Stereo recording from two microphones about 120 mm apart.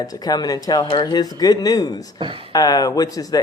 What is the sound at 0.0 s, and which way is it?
Speech, 35° left (ahead or behind).